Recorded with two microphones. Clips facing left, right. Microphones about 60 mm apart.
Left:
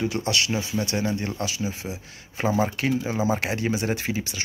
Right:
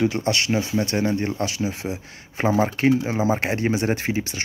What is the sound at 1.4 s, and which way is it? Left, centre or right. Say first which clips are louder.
Speech: right 4 dB; right.